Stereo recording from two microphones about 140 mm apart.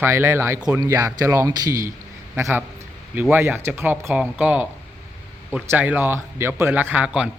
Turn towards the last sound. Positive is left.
turn(degrees=-10)  # may be behind; listen again after turning